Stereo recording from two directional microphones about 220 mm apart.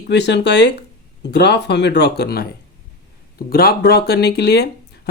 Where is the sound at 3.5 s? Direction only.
45° left (ahead or behind).